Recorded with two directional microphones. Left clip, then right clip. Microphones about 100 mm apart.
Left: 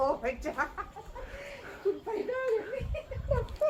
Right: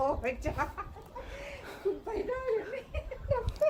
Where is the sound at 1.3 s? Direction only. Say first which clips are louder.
Even; 20° right (ahead or behind).